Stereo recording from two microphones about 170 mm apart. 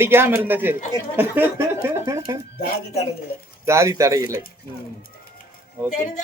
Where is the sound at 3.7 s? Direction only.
15° right (ahead or behind).